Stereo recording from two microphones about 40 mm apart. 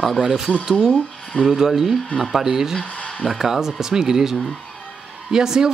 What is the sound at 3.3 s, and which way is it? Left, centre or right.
A man's voice, centre.